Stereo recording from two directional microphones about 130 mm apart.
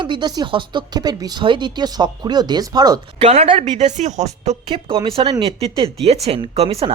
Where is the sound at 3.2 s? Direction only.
50° right (ahead or behind).